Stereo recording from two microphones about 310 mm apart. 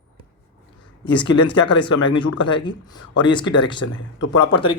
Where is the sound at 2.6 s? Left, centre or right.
Centre.